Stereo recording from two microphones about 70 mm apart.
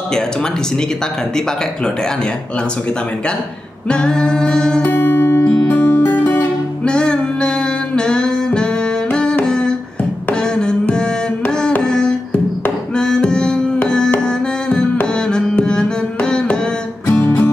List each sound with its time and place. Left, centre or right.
3.9 s music: centre
4.9 s music: left
6.8 s music: centre
12.9 s tabla: centre
13.8 s music: centre
17.1 s music: left